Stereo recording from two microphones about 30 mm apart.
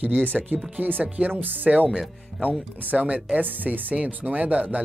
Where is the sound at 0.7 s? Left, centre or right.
Right.